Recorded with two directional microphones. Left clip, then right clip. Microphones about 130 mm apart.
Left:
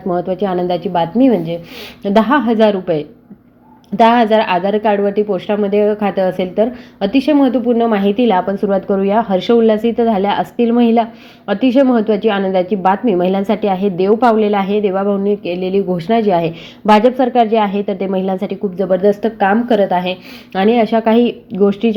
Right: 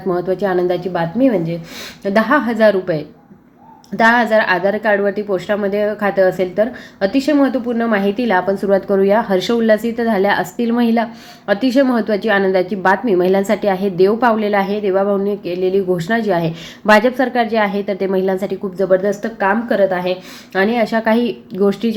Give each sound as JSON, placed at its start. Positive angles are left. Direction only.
{"t": 0.2, "sound": "a woman's voice", "side_deg": 35}
{"t": 16.8, "sound": "a woman's voice", "side_deg": 20}
{"t": 18.9, "sound": "a woman's voice", "side_deg": 50}
{"t": 20.5, "sound": "speech", "side_deg": 45}